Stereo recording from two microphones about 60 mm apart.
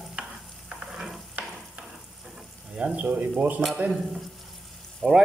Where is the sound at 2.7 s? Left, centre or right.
Right.